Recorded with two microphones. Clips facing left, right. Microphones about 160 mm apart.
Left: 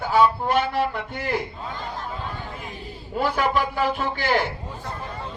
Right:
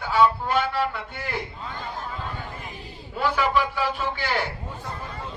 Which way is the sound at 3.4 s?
45° left (ahead or behind).